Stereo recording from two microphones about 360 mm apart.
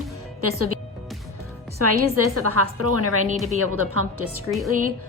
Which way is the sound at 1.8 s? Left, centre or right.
Right.